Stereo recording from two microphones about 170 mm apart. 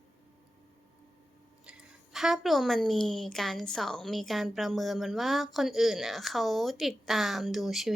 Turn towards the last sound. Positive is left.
turn(degrees=0)  # may be behind; listen again after turning